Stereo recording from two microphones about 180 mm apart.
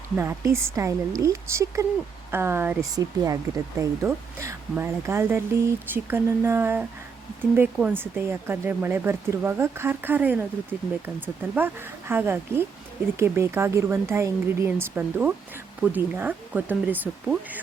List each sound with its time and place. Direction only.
0.2 s speech: 15° right (ahead or behind)